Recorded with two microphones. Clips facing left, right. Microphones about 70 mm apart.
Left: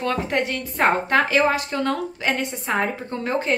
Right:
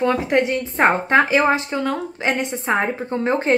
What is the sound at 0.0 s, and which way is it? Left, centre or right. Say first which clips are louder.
A woman's voice: right 5 dB; centre.